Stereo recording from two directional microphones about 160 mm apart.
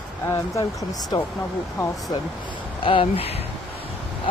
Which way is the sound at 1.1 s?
30° left (ahead or behind).